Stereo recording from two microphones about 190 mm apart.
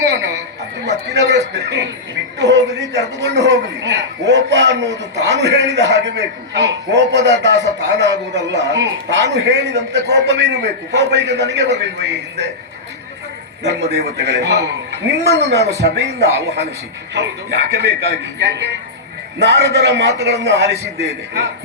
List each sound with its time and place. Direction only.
0.9 s a man's voice: 60° right (ahead or behind)
13.9 s a man's voice: 60° right (ahead or behind)